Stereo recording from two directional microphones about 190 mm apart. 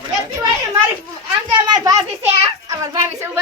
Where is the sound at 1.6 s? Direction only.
20° right (ahead or behind).